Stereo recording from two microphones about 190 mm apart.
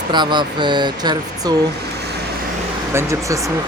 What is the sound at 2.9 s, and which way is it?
Speech, 15° right (ahead or behind).